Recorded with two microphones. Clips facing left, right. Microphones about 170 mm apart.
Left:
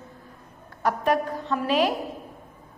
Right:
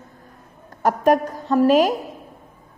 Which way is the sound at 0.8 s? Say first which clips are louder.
Right 6 dB; 45° right (ahead or behind).